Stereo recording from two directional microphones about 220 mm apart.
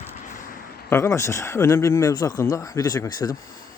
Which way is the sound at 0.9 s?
15° left (ahead or behind).